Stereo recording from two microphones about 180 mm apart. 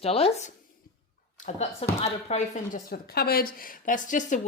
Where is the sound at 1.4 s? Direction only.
35° left (ahead or behind).